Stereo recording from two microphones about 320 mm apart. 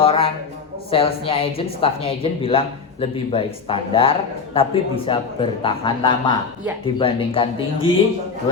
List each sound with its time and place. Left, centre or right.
0.0 s a man's voice: centre